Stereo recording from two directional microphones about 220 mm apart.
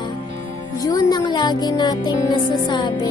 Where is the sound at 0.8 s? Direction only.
15° left (ahead or behind).